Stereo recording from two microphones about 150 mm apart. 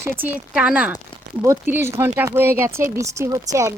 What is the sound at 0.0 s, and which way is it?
Speech, 10° right (ahead or behind).